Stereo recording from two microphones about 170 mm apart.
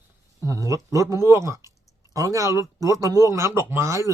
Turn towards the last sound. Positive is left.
turn(degrees=-15)  # may be behind; listen again after turning